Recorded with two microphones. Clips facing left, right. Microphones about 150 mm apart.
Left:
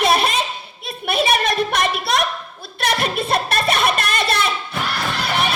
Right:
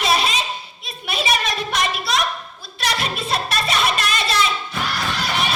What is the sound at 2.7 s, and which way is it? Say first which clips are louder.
Music: left 4 dB; 55° left (ahead or behind).